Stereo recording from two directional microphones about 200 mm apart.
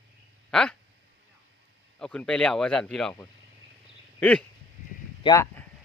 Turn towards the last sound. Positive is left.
turn(degrees=20)  # may be behind; listen again after turning